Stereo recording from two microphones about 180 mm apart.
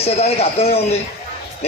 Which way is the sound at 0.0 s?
35° left (ahead or behind).